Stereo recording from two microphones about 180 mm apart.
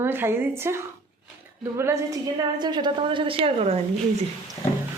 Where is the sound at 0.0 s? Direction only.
10° right (ahead or behind); by 3.8 s 30° right (ahead or behind).